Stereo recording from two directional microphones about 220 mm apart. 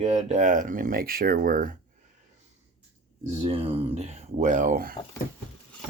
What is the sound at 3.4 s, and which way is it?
Speech, 25° right (ahead or behind).